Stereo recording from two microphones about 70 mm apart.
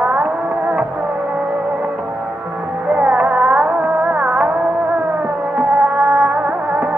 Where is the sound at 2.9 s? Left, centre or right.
Centre.